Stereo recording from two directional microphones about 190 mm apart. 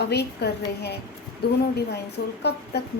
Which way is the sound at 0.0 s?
60° left (ahead or behind).